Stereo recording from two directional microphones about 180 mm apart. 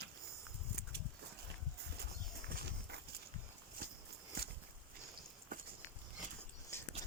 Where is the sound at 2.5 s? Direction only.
65° right (ahead or behind).